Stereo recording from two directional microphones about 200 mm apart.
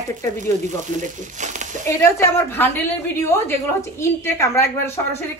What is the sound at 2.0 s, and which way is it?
Speech, 10° left (ahead or behind).